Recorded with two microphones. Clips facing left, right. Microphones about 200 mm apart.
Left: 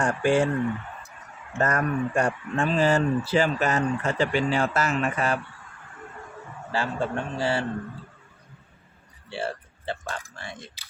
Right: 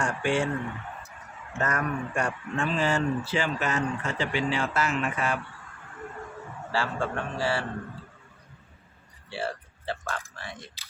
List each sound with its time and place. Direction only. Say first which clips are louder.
0.0 s speech: left 5 dB; 35° left (ahead or behind)
1.5 s speech: left 4 dB; 40° left (ahead or behind)
6.7 s a man's voice: left 2 dB; 20° left (ahead or behind)
9.3 s a sound: left 2 dB; 25° left (ahead or behind)